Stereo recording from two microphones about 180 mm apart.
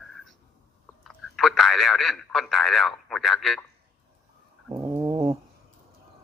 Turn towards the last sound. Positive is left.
turn(degrees=-20)  # may be behind; listen again after turning